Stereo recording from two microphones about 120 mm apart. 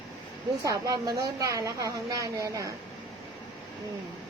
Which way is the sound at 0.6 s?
30° right (ahead or behind).